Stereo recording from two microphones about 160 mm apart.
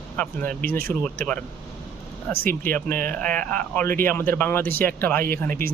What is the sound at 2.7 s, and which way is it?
Speech, 10° left (ahead or behind).